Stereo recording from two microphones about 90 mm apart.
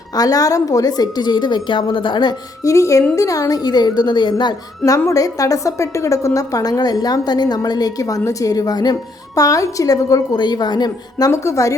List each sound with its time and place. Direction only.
0.2 s a woman's voice: 45° left (ahead or behind); by 2.3 s 60° left (ahead or behind)
2.6 s a woman's voice: 35° left (ahead or behind); by 4.5 s 55° left (ahead or behind)
4.9 s a woman's voice: 40° left (ahead or behind)
11.3 s a woman's voice: 35° left (ahead or behind)